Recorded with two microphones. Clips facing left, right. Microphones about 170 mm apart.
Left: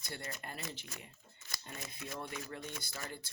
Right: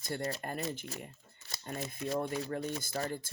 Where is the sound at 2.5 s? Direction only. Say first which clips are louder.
Right 9 dB; 40° right (ahead or behind).